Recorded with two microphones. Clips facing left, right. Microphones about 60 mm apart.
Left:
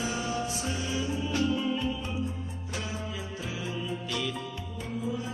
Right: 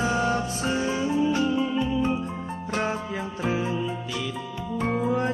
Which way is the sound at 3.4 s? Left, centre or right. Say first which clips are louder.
Right 10 dB; right.